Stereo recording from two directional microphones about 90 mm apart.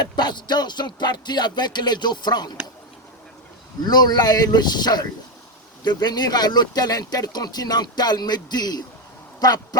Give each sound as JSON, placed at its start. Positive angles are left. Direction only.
{"t": 0.0, "sound": "speech", "side_deg": 55}
{"t": 3.8, "sound": "speech", "side_deg": 50}